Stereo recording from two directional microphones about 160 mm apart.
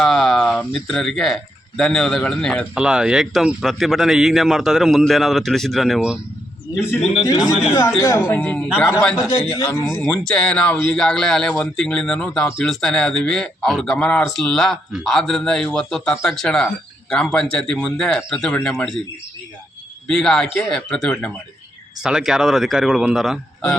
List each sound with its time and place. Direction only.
0.0 s speech: centre (ahead or behind)
2.7 s speech: 5° right (ahead or behind)
7.3 s a man's voice: 20° left (ahead or behind)
10.0 s speech: 5° left (ahead or behind)
20.1 s speech: 5° left (ahead or behind)
22.0 s speech: 5° right (ahead or behind)